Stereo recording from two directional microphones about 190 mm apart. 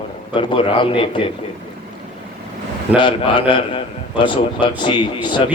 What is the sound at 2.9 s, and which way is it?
A man's voice, 25° left (ahead or behind).